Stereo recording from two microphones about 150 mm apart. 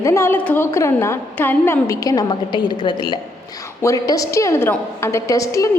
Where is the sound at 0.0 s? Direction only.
20° left (ahead or behind).